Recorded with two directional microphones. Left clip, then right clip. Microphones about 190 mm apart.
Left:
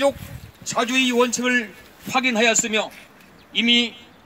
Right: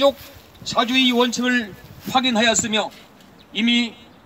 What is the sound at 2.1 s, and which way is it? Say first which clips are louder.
A man's voice: right 1 dB; 35° left (ahead or behind).